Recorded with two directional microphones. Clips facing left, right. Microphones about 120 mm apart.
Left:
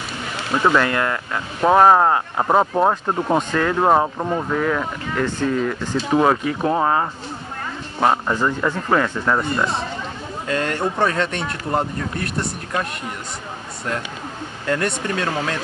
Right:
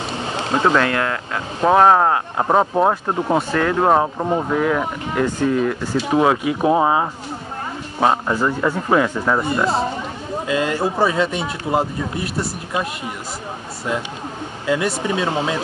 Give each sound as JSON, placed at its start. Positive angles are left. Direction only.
{"t": 0.1, "sound": "a sound", "side_deg": -30}
{"t": 0.7, "sound": "speech", "side_deg": 0}
{"t": 14.7, "sound": "speech", "side_deg": -5}